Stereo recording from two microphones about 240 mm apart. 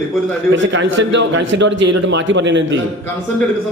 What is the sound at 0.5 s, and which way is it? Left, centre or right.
A man's voice, right.